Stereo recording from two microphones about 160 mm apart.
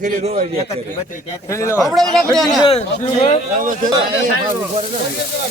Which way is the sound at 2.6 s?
35° left (ahead or behind).